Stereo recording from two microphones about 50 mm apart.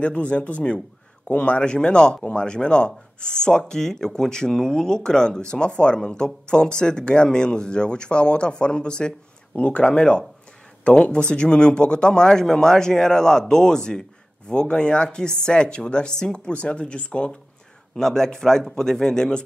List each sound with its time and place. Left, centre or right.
0.0 s speech: left
17.9 s speech: centre